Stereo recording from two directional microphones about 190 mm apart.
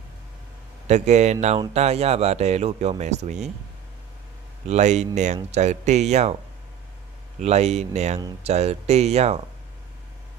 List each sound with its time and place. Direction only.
0.8 s speech: 35° right (ahead or behind)
4.6 s speech: 35° right (ahead or behind)
7.3 s speech: 35° right (ahead or behind)